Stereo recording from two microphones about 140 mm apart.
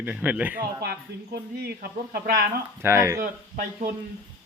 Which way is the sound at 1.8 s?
90° right.